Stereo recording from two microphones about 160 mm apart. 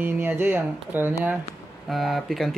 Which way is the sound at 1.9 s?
Centre (ahead or behind).